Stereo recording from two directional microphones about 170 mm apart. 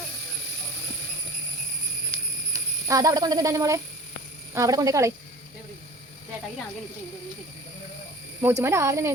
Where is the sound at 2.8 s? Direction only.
20° right (ahead or behind).